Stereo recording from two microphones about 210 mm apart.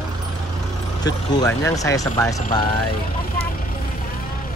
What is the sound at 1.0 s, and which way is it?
Speech, 15° left (ahead or behind).